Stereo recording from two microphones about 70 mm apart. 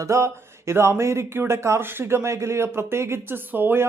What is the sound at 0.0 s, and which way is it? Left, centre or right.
Speech, right.